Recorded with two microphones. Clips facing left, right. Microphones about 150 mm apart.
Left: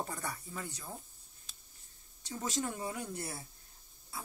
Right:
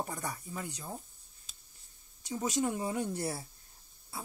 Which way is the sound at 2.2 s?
15° right (ahead or behind).